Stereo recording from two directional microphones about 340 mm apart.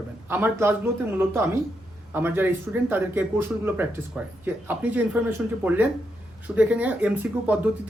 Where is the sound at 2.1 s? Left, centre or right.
Centre.